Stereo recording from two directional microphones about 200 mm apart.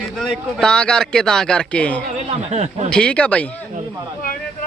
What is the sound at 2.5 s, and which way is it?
Speech, 35° right (ahead or behind).